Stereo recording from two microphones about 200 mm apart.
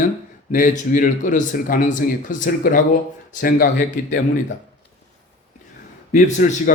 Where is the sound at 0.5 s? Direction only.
40° left (ahead or behind).